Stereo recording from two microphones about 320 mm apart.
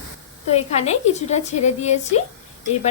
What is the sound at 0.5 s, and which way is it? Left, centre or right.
A woman's voice, centre.